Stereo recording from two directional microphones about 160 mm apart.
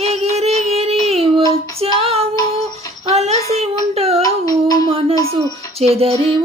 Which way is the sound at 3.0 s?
40° right (ahead or behind).